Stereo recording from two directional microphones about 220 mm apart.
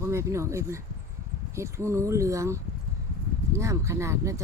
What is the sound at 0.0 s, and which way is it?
Speech, 10° right (ahead or behind).